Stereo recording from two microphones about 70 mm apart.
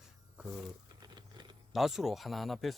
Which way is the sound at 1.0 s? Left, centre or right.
Right.